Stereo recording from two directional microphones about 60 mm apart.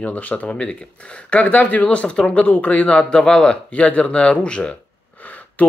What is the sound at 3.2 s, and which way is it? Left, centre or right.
Speech, centre.